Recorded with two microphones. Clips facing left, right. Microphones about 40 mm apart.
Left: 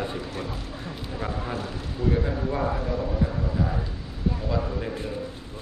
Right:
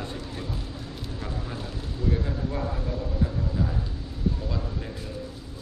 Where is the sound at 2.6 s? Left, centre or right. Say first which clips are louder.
Left 5 dB; left.